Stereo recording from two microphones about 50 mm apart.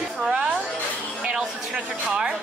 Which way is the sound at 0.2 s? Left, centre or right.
Centre.